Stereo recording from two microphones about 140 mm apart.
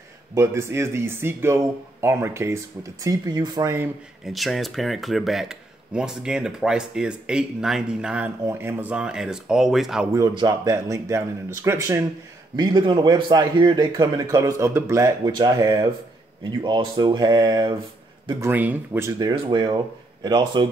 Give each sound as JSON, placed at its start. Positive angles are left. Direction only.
{"t": 0.3, "sound": "speech", "side_deg": -20}
{"t": 4.3, "sound": "speech", "side_deg": 0}
{"t": 10.1, "sound": "speech", "side_deg": -25}
{"t": 12.5, "sound": "speech", "side_deg": -35}
{"t": 18.4, "sound": "speech", "side_deg": -10}
{"t": 19.0, "sound": "speech", "side_deg": -30}